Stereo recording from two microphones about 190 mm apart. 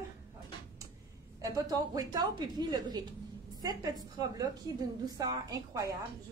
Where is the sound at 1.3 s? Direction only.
20° right (ahead or behind).